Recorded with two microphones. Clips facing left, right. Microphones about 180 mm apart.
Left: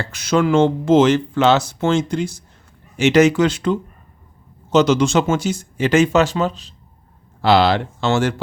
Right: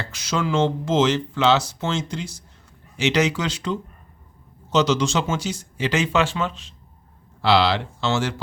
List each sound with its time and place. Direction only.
0.0 s speech: 55° left (ahead or behind); by 6.7 s 35° left (ahead or behind)
7.4 s speech: 50° left (ahead or behind)